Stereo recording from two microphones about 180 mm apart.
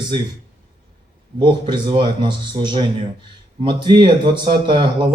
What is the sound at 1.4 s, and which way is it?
Speech, 25° right (ahead or behind).